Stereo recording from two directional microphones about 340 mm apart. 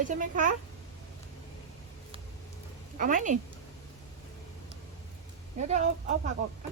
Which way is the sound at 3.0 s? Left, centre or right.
Right.